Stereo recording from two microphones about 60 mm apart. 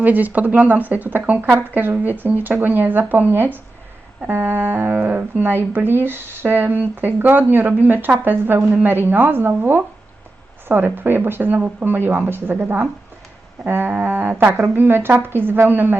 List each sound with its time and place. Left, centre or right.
0.0 s speech: right